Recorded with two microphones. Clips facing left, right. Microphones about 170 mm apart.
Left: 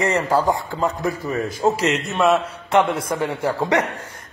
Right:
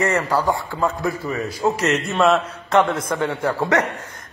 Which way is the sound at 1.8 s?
15° left (ahead or behind).